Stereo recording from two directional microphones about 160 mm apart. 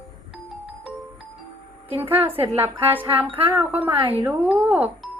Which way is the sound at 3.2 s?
35° right (ahead or behind).